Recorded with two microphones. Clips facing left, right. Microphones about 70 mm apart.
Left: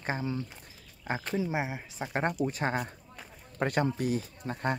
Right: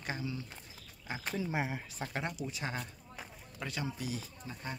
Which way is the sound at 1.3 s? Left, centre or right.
Centre.